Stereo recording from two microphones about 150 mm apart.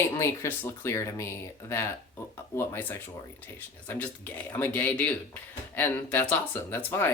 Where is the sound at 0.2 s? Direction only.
15° left (ahead or behind).